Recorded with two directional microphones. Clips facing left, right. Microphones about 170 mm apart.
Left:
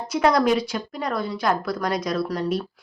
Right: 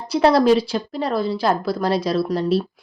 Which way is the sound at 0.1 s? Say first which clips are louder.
Right 5 dB; 30° right (ahead or behind).